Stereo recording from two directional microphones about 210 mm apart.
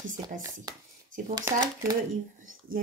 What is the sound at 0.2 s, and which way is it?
Speech, 20° right (ahead or behind).